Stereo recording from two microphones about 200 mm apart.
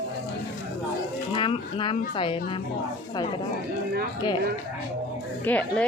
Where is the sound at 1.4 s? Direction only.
25° left (ahead or behind).